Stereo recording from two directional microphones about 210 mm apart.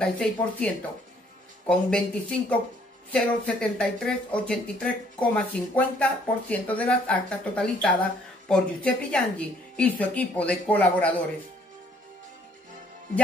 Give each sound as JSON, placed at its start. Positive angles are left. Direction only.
{"t": 0.0, "sound": "speech", "side_deg": 5}
{"t": 1.7, "sound": "speech", "side_deg": 5}